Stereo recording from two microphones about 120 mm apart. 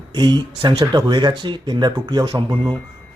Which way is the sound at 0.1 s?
35° right (ahead or behind).